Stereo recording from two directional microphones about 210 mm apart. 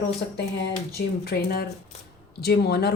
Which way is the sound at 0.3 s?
50° left (ahead or behind).